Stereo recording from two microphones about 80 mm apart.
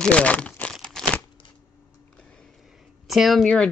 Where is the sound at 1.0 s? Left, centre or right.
Centre.